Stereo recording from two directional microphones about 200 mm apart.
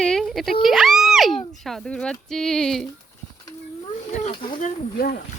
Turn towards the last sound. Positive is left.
turn(degrees=50)  # may be behind; listen again after turning